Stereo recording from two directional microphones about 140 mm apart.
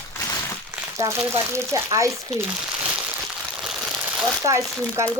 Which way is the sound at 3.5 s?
5° right (ahead or behind).